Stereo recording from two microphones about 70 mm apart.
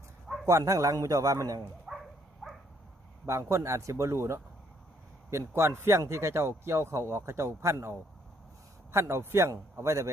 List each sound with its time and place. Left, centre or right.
0.4 s a man's voice: right
1.9 s a sound: centre
2.4 s dog: centre
3.2 s a man's voice: right